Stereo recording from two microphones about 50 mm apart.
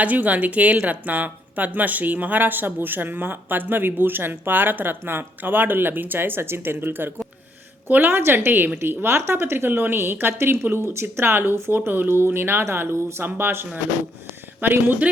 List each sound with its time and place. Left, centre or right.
0.0 s speech: right
9.1 s speech: right
13.2 s speech: right